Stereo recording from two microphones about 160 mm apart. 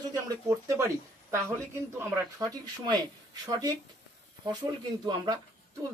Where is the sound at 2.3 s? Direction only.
25° right (ahead or behind).